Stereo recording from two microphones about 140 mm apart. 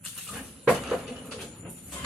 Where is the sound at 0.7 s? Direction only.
5° right (ahead or behind).